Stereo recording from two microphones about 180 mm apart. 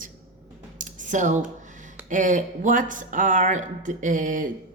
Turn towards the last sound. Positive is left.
turn(degrees=-45)  # may be behind; listen again after turning